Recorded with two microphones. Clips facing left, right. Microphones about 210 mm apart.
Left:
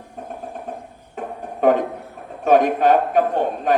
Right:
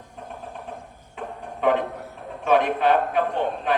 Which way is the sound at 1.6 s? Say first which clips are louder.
Left 5 dB; 45° left (ahead or behind).